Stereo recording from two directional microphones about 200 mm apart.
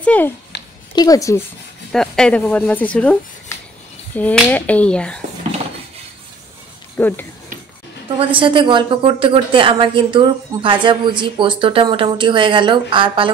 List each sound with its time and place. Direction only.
0.0 s speech: 5° left (ahead or behind)
0.9 s speech: 20° left (ahead or behind)
1.9 s speech: 5° left (ahead or behind)
7.0 s speech: 10° left (ahead or behind)
8.2 s a woman's voice: 25° right (ahead or behind)